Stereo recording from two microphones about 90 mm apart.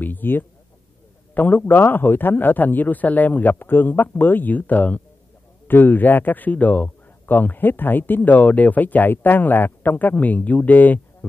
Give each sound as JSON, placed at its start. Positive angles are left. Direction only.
{"t": 0.0, "sound": "speech", "side_deg": 20}